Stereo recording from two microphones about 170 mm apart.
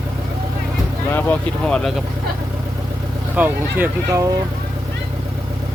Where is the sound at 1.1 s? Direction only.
10° left (ahead or behind).